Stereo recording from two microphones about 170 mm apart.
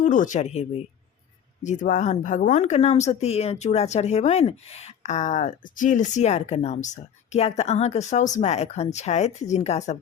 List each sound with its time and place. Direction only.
0.0 s speech: 50° left (ahead or behind)
1.6 s speech: 45° left (ahead or behind)